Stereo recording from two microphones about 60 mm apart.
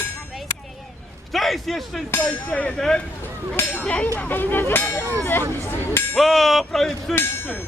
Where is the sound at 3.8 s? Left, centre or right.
Left.